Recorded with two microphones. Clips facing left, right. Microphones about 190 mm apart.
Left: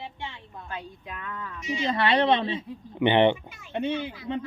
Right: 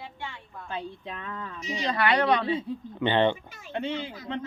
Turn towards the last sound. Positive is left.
turn(degrees=20)  # may be behind; listen again after turning